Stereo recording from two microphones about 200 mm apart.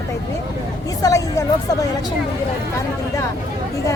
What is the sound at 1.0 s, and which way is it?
Speech, 15° left (ahead or behind).